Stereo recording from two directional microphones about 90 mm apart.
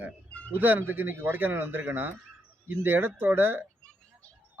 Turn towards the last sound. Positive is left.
turn(degrees=-25)  # may be behind; listen again after turning